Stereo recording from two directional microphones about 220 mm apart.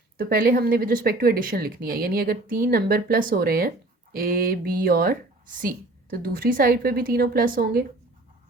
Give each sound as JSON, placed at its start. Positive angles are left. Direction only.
{"t": 0.2, "sound": "speech", "side_deg": -40}